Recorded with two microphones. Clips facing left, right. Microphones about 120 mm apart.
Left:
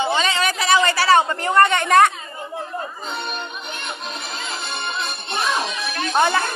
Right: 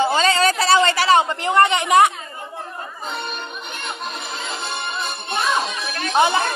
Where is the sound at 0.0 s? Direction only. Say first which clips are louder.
Right 3 dB; 35° right (ahead or behind); by 2.1 s 15° right (ahead or behind).